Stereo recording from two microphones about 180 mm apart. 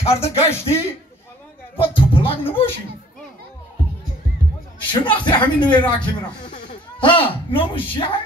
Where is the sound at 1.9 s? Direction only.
30° left (ahead or behind).